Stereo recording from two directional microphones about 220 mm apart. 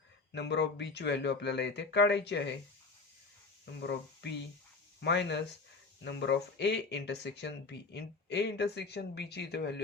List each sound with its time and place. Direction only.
0.3 s speech: 50° left (ahead or behind)
3.8 s speech: 50° left (ahead or behind)